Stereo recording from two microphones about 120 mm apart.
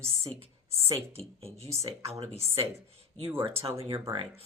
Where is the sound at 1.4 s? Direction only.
55° right (ahead or behind).